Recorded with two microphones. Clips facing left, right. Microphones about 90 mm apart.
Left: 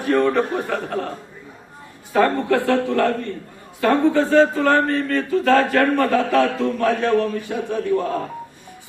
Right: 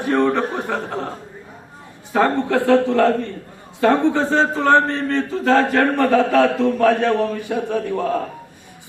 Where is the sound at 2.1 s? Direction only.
20° right (ahead or behind).